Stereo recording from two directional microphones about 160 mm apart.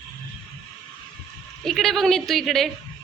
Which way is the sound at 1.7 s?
Centre (ahead or behind).